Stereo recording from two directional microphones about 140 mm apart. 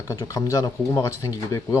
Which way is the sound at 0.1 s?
25° left (ahead or behind).